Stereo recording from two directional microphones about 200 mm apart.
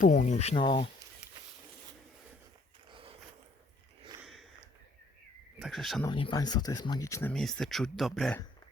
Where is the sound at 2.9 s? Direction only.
25° right (ahead or behind).